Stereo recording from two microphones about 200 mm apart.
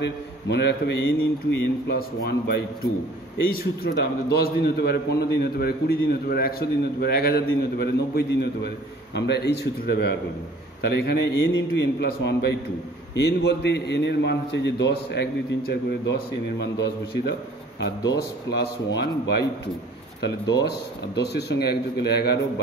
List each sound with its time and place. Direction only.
0.0 s a man's voice: 60° left (ahead or behind)